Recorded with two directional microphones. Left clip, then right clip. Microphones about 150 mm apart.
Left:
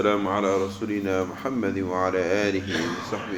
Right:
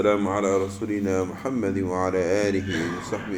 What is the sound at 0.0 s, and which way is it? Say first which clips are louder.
Speech: right 1 dB; 20° right (ahead or behind).